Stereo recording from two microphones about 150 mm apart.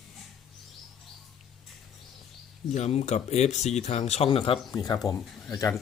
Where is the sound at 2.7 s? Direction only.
45° left (ahead or behind).